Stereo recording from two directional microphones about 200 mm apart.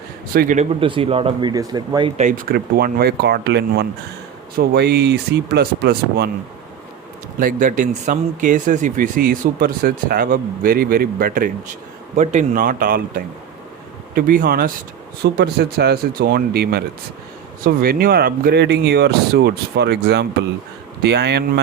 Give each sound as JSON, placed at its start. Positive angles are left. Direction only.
{"t": 0.3, "sound": "speech", "side_deg": -40}
{"t": 7.3, "sound": "speech", "side_deg": -40}
{"t": 12.1, "sound": "speech", "side_deg": -35}